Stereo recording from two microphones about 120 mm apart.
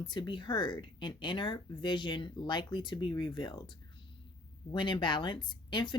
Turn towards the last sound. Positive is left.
turn(degrees=40)  # may be behind; listen again after turning